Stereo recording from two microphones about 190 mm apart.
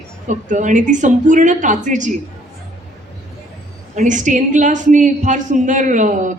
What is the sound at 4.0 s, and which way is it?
Speech, 40° right (ahead or behind).